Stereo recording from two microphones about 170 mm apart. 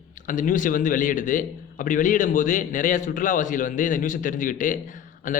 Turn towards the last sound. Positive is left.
turn(degrees=50)  # may be behind; listen again after turning